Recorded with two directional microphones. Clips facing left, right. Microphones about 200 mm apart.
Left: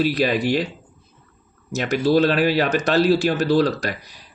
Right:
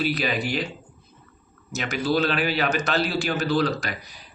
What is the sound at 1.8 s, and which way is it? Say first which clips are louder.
Speech: left 6 dB; 40° left (ahead or behind).